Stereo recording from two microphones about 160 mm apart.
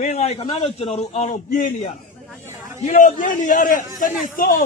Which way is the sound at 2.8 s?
55° left (ahead or behind).